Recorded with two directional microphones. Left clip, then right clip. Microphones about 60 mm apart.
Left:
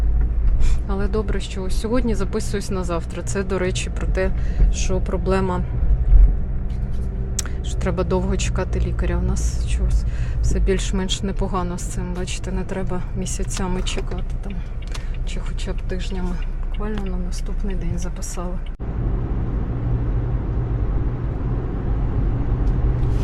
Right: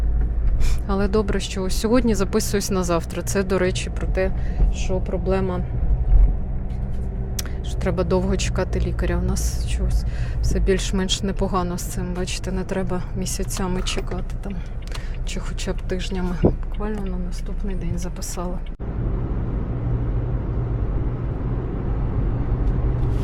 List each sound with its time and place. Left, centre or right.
0.9 s speech: right
3.2 s speech: centre
3.7 s speech: centre
4.8 s speech: centre
7.3 s a woman's voice: centre
11.9 s speech: centre
12.2 s a woman's voice: centre
13.8 s a woman's voice: centre
15.4 s speech: right
16.9 s speech: centre
19.3 s vehicle: centre